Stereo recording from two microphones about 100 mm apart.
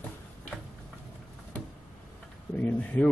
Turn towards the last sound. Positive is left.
turn(degrees=15)  # may be behind; listen again after turning